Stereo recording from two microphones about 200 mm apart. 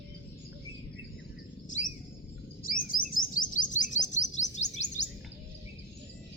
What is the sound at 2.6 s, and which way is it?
Chirp, 45° left (ahead or behind).